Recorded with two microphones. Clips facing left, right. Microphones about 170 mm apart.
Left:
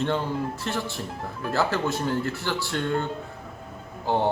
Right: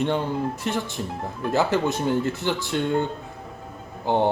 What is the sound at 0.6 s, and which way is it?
Speech, 15° right (ahead or behind).